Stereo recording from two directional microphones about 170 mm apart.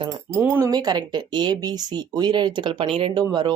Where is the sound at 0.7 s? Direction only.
25° right (ahead or behind).